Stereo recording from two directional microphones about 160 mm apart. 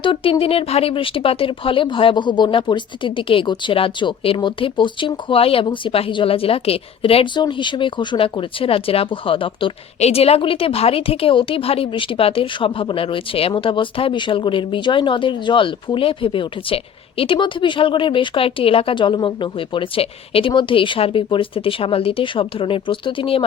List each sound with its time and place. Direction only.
0.0 s speech: 35° left (ahead or behind)